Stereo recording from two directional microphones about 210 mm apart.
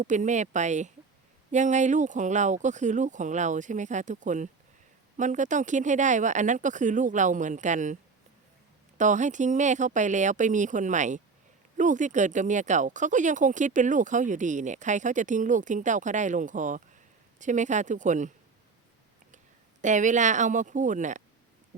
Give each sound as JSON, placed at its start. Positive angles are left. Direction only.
{"t": 0.0, "sound": "speech", "side_deg": -35}
{"t": 9.0, "sound": "speech", "side_deg": -35}
{"t": 19.8, "sound": "speech", "side_deg": -35}